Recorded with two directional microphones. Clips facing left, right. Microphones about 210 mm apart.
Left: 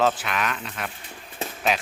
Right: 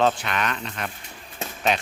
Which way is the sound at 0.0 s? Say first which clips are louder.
Right 1 dB; centre (ahead or behind).